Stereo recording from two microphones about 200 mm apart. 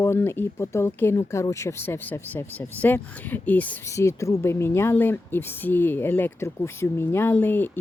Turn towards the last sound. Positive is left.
turn(degrees=10)  # may be behind; listen again after turning